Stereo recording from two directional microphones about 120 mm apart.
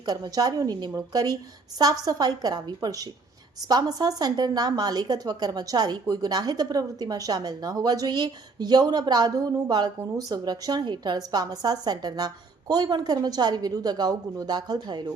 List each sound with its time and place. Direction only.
0.0 s a woman's voice: 30° right (ahead or behind)